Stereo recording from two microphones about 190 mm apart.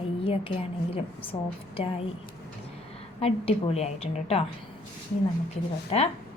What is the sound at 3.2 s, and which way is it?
A woman's voice, 30° left (ahead or behind).